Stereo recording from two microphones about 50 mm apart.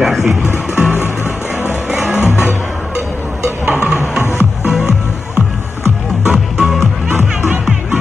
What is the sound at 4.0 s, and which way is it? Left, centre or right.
Music, left.